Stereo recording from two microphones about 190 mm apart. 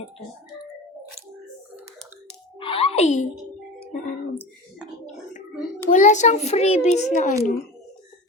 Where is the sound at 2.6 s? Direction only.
30° left (ahead or behind).